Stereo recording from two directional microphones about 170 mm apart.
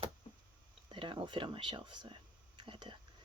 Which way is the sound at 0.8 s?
30° right (ahead or behind).